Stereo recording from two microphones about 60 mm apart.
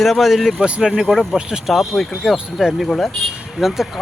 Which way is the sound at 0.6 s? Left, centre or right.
Centre.